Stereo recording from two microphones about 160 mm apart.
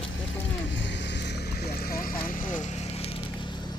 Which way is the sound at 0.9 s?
90° left.